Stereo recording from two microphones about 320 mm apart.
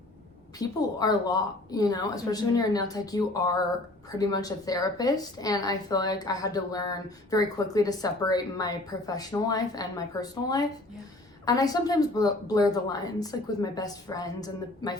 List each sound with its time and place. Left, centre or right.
0.6 s a woman's voice: centre